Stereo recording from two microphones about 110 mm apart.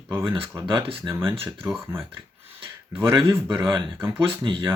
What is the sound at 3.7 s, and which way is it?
Speech, 45° right (ahead or behind).